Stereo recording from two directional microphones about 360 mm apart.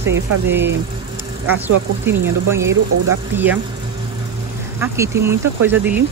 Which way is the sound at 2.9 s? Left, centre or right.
Right.